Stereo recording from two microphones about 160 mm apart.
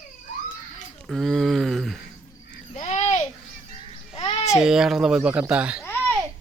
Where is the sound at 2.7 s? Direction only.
45° left (ahead or behind).